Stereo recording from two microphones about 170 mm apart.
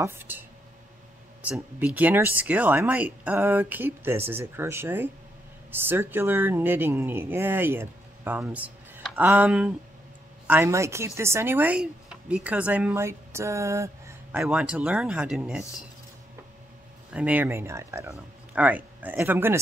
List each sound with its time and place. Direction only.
0.0 s speech: 10° right (ahead or behind)
14.4 s speech: 5° right (ahead or behind)
17.1 s speech: 10° right (ahead or behind)